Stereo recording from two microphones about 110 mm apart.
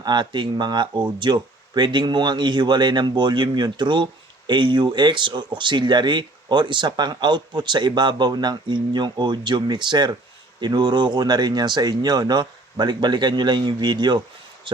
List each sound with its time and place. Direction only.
0.0 s speech: 40° right (ahead or behind)